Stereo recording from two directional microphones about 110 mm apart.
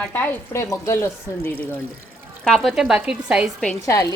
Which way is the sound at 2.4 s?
5° left (ahead or behind).